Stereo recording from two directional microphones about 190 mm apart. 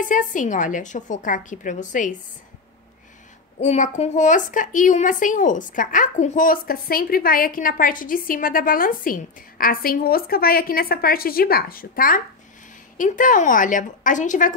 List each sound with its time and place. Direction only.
0.0 s a woman's voice: 45° left (ahead or behind)
3.6 s a woman's voice: 40° left (ahead or behind)